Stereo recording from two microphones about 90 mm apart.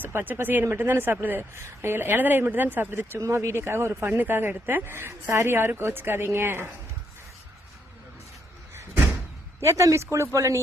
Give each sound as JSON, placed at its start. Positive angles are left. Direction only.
{"t": 0.0, "sound": "speech", "side_deg": -20}
{"t": 9.6, "sound": "speech", "side_deg": -35}